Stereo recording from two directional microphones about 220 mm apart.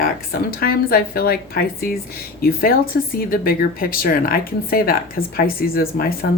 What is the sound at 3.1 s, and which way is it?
Speech, 40° left (ahead or behind).